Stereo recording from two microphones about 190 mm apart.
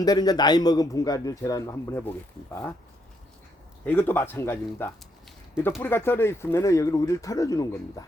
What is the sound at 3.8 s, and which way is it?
A man's voice, 10° left (ahead or behind).